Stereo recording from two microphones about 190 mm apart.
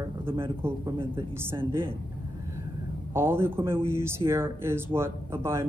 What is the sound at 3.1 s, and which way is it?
Speech, 10° right (ahead or behind).